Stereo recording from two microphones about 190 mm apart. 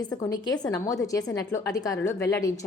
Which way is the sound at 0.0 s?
20° left (ahead or behind).